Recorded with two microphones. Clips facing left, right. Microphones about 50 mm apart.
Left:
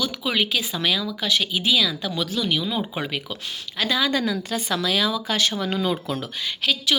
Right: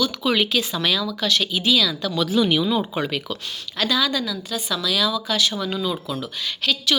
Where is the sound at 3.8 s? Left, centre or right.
Left.